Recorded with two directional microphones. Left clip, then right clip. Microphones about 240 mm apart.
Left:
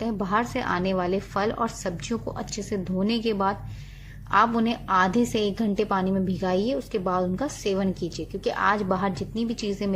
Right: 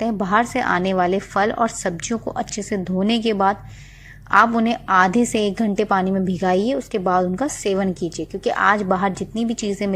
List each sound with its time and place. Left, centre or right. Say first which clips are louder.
0.0 s a woman's voice: right 7 dB; right